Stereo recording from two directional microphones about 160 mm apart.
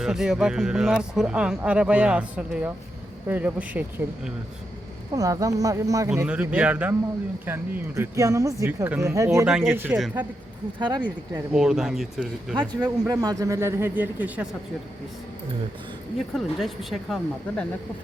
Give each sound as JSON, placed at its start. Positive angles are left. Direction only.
{"t": 0.0, "sound": "speech", "side_deg": -5}
{"t": 5.1, "sound": "speech", "side_deg": -20}
{"t": 6.1, "sound": "speech", "side_deg": -10}
{"t": 9.5, "sound": "speech", "side_deg": -5}
{"t": 10.8, "sound": "speech", "side_deg": -25}
{"t": 11.5, "sound": "speech", "side_deg": -5}
{"t": 12.5, "sound": "speech", "side_deg": -25}
{"t": 16.1, "sound": "speech", "side_deg": 0}